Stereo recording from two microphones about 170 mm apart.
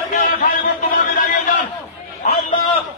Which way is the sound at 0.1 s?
50° left (ahead or behind).